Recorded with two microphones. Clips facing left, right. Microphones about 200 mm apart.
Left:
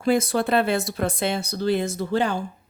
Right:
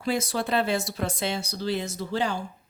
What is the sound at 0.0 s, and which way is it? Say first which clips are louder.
Speech: left 6 dB; 55° left (ahead or behind).